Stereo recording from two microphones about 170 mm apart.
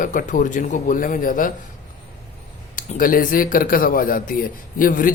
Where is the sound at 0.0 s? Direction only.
50° left (ahead or behind).